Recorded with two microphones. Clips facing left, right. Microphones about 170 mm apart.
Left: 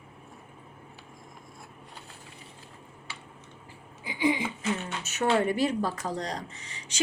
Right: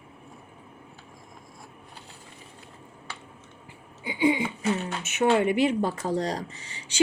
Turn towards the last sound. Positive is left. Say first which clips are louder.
# right 7 dB
turn(degrees=-30)  # may be behind; listen again after turning